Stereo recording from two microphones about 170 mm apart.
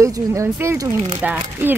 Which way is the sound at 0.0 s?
15° right (ahead or behind).